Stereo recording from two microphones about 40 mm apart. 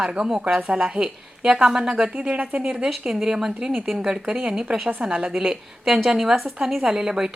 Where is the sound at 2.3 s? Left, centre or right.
Right.